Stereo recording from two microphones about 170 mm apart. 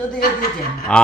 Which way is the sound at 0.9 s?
5° left (ahead or behind).